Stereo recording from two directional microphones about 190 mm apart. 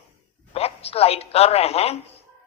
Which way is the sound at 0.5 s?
30° left (ahead or behind).